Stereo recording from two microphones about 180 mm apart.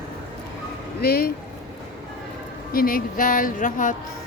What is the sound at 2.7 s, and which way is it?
Speech, 55° left (ahead or behind).